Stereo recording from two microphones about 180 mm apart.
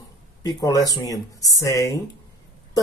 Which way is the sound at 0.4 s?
20° left (ahead or behind).